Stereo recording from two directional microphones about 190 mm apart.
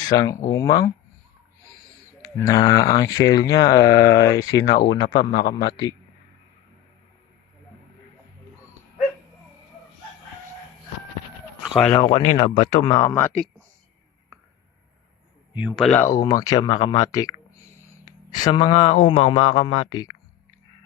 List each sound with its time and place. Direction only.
0.1 s speech: 20° left (ahead or behind)
2.2 s speech: 20° left (ahead or behind)
5.3 s a man's voice: 55° left (ahead or behind)
5.6 s speech: 25° left (ahead or behind)
11.9 s speech: 25° left (ahead or behind); by 13.5 s 10° left (ahead or behind)
15.5 s speech: 5° right (ahead or behind); by 20.1 s 25° left (ahead or behind)